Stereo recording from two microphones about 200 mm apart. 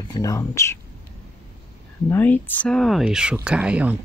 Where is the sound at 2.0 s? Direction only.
10° left (ahead or behind); by 3.9 s 5° right (ahead or behind).